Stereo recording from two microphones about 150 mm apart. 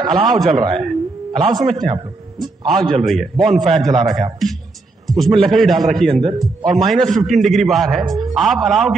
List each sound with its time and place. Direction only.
0.0 s a man's voice: centre (ahead or behind)
0.6 s a man's voice: 40° right (ahead or behind)
0.8 s a sound: centre (ahead or behind)
1.6 s a man's voice: centre (ahead or behind)